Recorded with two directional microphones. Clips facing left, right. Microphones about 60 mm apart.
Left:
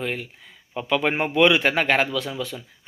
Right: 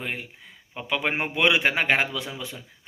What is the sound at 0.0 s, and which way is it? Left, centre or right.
A man's voice, centre.